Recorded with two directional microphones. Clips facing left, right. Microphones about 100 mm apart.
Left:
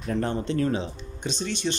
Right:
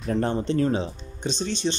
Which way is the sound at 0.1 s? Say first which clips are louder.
Right 3 dB; 35° right (ahead or behind).